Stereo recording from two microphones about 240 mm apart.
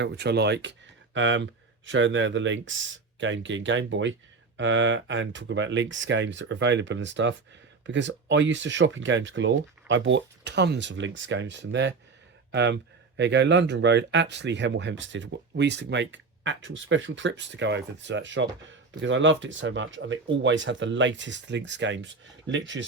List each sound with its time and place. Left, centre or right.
0.0 s speech: right